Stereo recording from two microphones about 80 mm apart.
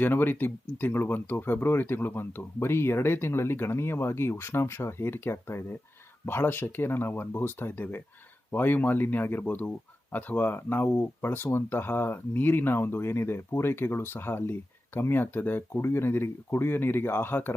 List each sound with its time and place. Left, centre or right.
0.0 s speech: left